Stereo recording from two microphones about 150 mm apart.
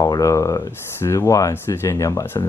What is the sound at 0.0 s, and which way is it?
Speech, 20° left (ahead or behind).